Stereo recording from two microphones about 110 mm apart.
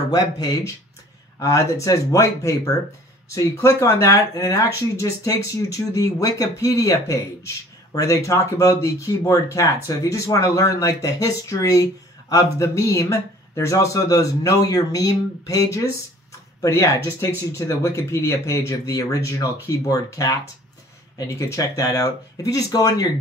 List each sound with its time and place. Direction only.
0.1 s speech: 35° left (ahead or behind)